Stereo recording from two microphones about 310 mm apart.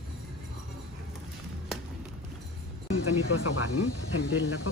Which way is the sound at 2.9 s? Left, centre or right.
Left.